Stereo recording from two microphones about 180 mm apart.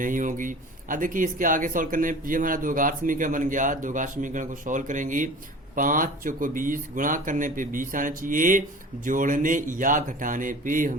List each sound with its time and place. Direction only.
0.0 s speech: 45° right (ahead or behind)